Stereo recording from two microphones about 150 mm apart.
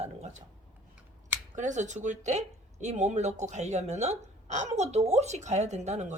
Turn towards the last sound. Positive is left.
turn(degrees=-50)  # may be behind; listen again after turning